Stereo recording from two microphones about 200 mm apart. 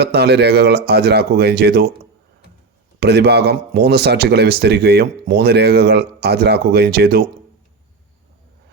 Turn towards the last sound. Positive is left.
turn(degrees=-50)  # may be behind; listen again after turning